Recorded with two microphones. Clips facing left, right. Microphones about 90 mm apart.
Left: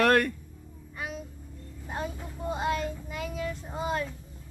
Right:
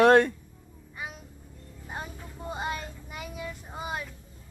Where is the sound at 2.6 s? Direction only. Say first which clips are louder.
Left 5 dB; 15° right (ahead or behind).